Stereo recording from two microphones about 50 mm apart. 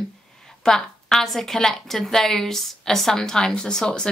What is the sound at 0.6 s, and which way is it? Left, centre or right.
A woman's voice, centre.